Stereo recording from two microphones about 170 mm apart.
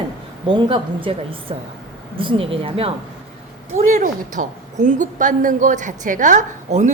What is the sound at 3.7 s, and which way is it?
A woman's voice, 45° right (ahead or behind).